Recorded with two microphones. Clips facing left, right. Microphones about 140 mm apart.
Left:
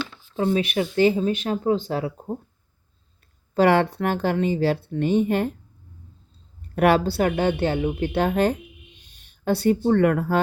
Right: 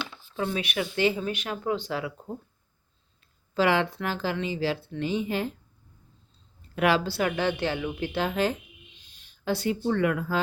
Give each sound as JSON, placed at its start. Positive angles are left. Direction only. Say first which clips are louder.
{"t": 0.3, "sound": "speech", "louder": "left 7 dB", "side_deg": 35}
{"t": 3.5, "sound": "speech", "louder": "left 6 dB", "side_deg": 50}
{"t": 6.7, "sound": "speech", "louder": "left 5 dB", "side_deg": 50}
{"t": 7.5, "sound": "speech", "louder": "left 6 dB", "side_deg": 30}
{"t": 8.0, "sound": "speech", "louder": "left 5 dB", "side_deg": 50}